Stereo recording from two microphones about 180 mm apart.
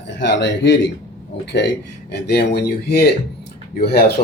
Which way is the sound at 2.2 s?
65° left (ahead or behind).